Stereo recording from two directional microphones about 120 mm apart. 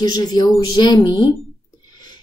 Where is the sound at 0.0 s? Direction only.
35° left (ahead or behind).